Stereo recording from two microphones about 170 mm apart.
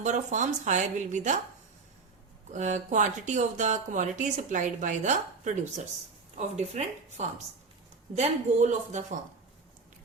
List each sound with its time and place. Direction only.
0.0 s speech: 45° right (ahead or behind)
2.5 s speech: 45° right (ahead or behind)